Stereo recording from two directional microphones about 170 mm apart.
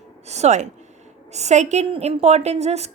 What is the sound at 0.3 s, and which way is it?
A woman's voice, 40° right (ahead or behind).